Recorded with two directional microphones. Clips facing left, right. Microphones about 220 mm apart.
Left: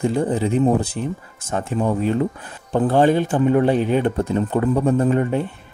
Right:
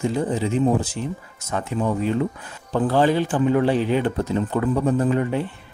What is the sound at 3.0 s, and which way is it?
Speech, 50° left (ahead or behind).